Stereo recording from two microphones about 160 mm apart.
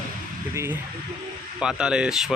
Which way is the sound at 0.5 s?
15° right (ahead or behind).